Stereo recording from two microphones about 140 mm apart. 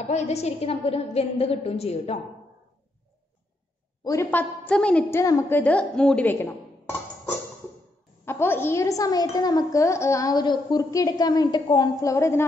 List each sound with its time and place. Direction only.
0.1 s a woman's voice: 50° left (ahead or behind)
4.0 s a woman's voice: 20° left (ahead or behind)
8.3 s a woman's voice: 15° left (ahead or behind)